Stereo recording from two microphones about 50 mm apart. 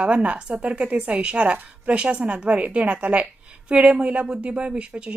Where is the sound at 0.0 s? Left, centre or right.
Right.